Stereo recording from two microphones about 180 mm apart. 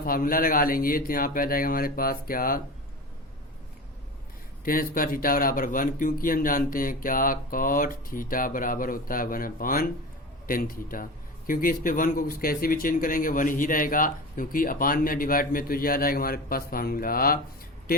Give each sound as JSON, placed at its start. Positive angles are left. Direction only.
{"t": 0.0, "sound": "a man's voice", "side_deg": 50}
{"t": 4.6, "sound": "a man's voice", "side_deg": 55}